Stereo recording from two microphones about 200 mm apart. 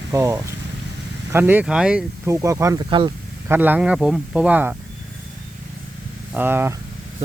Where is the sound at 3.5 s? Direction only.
10° right (ahead or behind).